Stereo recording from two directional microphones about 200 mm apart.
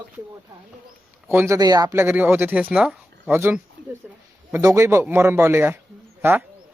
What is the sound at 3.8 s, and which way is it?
Speech, 55° right (ahead or behind).